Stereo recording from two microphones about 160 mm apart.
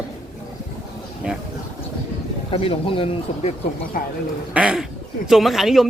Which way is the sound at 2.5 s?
35° left (ahead or behind).